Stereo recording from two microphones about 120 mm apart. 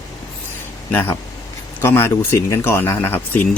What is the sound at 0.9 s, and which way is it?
Speech, 15° left (ahead or behind).